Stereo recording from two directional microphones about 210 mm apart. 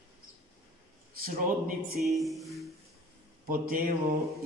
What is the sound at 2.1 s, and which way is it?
Speech, centre (ahead or behind).